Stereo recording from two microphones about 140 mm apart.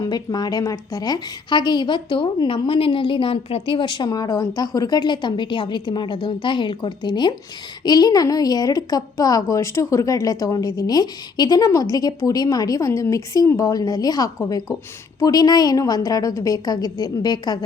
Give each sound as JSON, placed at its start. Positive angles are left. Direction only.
{"t": 0.0, "sound": "a woman's voice", "side_deg": 30}